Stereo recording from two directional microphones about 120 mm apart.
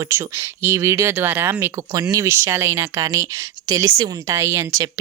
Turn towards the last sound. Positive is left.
turn(degrees=-25)  # may be behind; listen again after turning